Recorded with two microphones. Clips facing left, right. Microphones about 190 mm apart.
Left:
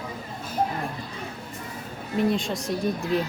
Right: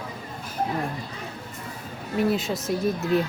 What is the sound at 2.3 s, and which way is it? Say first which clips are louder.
Speech: right 1 dB; 5° right (ahead or behind).